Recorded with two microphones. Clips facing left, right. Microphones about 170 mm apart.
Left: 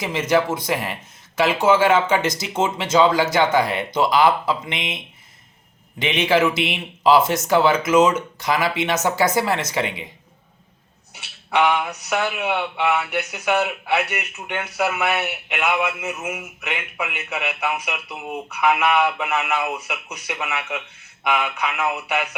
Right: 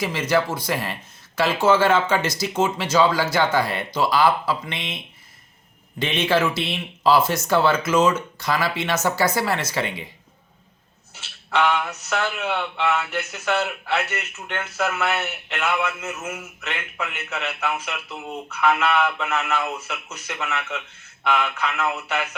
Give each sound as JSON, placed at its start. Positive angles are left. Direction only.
{"t": 0.0, "sound": "speech", "side_deg": 20}
{"t": 11.1, "sound": "speech", "side_deg": 15}